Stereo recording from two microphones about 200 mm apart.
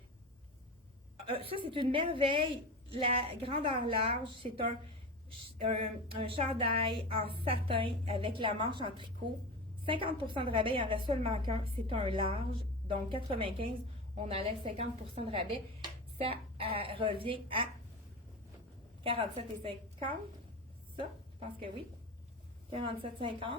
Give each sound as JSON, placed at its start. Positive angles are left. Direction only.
{"t": 1.3, "sound": "speech", "side_deg": -25}
{"t": 5.8, "sound": "speech", "side_deg": -25}
{"t": 19.0, "sound": "speech", "side_deg": -25}
{"t": 21.0, "sound": "a woman's voice", "side_deg": -25}